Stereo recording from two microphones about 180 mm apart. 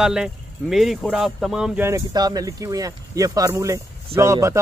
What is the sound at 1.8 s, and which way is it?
A man's voice, 20° right (ahead or behind).